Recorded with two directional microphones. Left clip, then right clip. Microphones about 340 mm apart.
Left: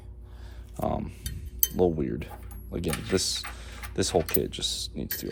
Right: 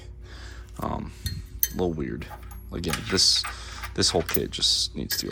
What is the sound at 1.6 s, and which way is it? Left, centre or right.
Speech, centre.